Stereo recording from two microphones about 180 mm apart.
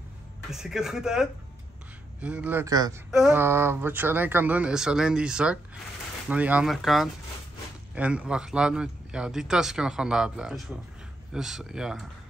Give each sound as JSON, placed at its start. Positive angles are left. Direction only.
{"t": 0.5, "sound": "speech", "side_deg": 0}
{"t": 2.7, "sound": "speech", "side_deg": -20}
{"t": 3.1, "sound": "speech", "side_deg": -5}